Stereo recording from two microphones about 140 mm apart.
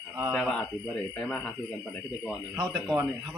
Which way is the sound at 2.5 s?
20° right (ahead or behind).